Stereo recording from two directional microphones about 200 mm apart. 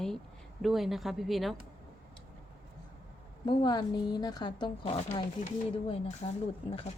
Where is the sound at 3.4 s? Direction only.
25° left (ahead or behind).